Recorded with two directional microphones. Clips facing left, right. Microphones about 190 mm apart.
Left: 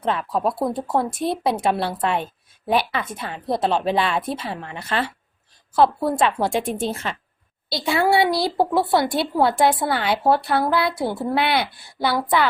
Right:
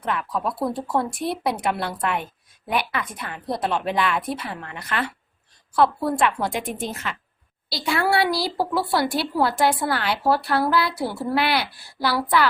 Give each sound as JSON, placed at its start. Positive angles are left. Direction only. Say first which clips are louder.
{"t": 0.0, "sound": "a woman's voice", "louder": "left 4 dB", "side_deg": 25}
{"t": 6.1, "sound": "a woman's voice", "louder": "left 3 dB", "side_deg": 25}